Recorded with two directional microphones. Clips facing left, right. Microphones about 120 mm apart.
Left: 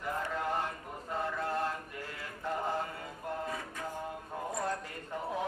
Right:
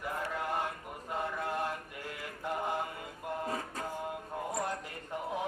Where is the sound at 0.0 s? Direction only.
10° right (ahead or behind).